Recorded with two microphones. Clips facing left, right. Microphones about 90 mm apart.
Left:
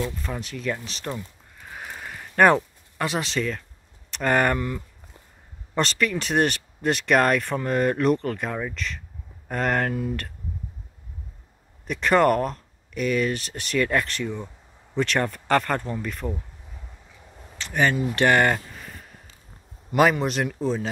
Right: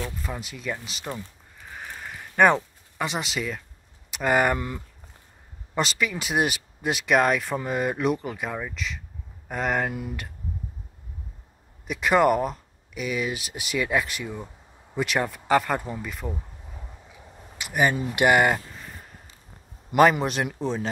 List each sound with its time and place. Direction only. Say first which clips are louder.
0.2 s speech: left 3 dB; 5° right (ahead or behind)
4.6 s speech: left 3 dB; 20° right (ahead or behind)
5.8 s speech: left 2 dB; 5° right (ahead or behind)
11.9 s speech: left 1 dB; 5° right (ahead or behind)
16.7 s a sound: right 3 dB; 10° right (ahead or behind)
19.9 s speech: right 1 dB; centre (ahead or behind)